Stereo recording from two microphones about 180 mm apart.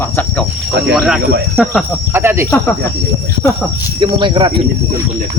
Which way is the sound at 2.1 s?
15° right (ahead or behind).